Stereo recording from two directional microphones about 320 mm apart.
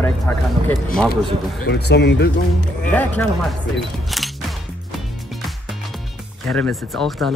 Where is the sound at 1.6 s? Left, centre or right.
Left.